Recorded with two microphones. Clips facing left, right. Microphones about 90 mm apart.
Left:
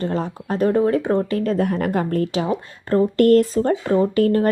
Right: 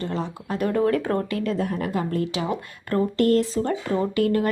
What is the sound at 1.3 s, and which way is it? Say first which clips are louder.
Speech: left 5 dB; 40° left (ahead or behind).